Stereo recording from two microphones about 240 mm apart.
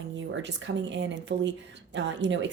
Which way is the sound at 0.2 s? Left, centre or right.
Right.